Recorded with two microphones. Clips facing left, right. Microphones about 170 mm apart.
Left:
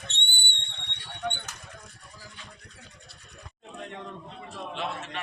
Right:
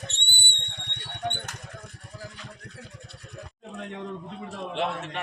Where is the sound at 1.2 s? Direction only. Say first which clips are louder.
Right 2 dB; 50° right (ahead or behind).